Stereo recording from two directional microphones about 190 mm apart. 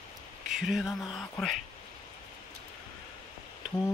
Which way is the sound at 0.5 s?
Centre (ahead or behind).